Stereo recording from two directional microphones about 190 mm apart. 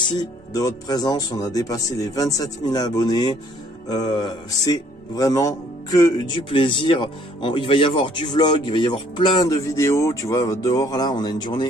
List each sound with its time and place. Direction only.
0.0 s speech: 20° left (ahead or behind)